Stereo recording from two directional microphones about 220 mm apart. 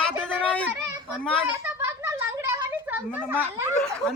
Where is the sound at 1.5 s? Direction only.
10° right (ahead or behind).